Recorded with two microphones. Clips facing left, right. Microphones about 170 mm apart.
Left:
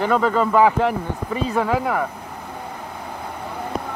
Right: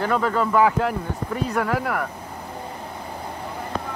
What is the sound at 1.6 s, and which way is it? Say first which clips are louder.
Speech: left 3 dB; 20° left (ahead or behind).